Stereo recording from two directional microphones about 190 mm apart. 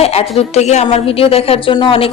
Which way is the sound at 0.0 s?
30° left (ahead or behind).